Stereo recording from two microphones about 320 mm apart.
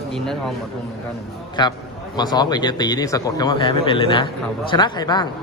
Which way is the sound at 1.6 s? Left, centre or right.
Centre.